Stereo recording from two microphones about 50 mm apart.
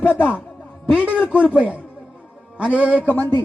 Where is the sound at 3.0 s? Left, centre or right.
Left.